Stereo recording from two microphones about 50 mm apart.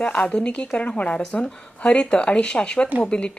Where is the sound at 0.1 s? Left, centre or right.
Left.